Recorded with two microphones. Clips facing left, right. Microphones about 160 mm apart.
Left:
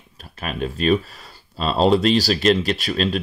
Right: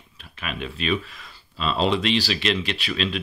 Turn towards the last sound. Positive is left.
turn(degrees=40)  # may be behind; listen again after turning